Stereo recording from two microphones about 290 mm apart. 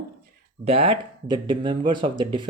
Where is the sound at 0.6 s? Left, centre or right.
Centre.